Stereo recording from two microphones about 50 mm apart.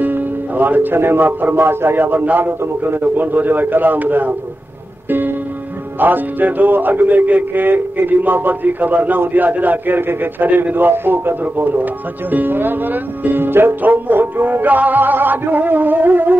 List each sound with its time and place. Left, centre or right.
0.0 s a man's voice: right
5.9 s a man's voice: right